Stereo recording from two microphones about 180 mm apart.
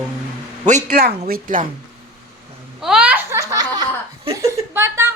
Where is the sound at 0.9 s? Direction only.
60° right (ahead or behind).